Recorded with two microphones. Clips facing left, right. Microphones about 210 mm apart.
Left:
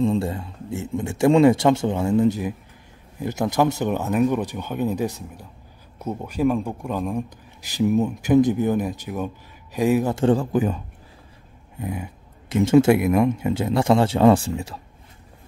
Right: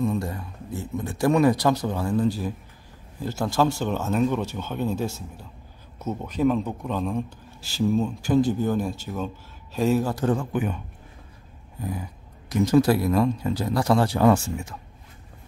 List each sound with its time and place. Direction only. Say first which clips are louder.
0.0 s speech: left 4 dB; 30° left (ahead or behind)
10.1 s a man's voice: left 5 dB; 30° left (ahead or behind)
11.8 s speech: left 2 dB; 20° left (ahead or behind)